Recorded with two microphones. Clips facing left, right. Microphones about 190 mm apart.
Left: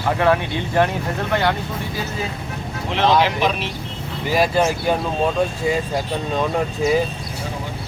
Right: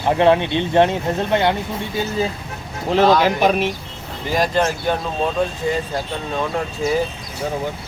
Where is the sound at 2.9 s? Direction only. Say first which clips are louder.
Right 3 dB; 40° right (ahead or behind).